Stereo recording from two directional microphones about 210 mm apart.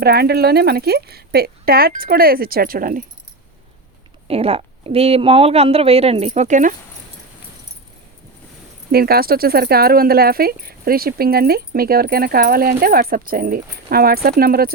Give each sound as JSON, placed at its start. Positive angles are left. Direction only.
{"t": 0.0, "sound": "speech", "side_deg": -50}
{"t": 4.3, "sound": "a woman's voice", "side_deg": -30}
{"t": 8.9, "sound": "speech", "side_deg": -45}